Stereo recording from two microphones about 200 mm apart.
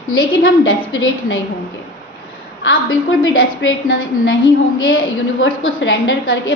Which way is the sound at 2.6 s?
85° left.